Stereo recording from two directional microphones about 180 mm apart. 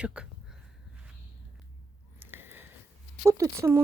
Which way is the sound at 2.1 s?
10° right (ahead or behind).